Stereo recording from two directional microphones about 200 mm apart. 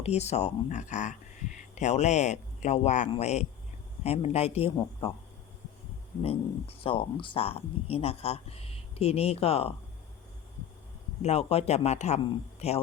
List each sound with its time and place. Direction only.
0.0 s speech: 35° left (ahead or behind)
6.2 s speech: 30° left (ahead or behind)
11.2 s speech: 30° left (ahead or behind)